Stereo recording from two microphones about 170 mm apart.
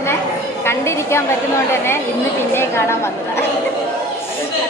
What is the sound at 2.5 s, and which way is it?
Speech, 15° left (ahead or behind).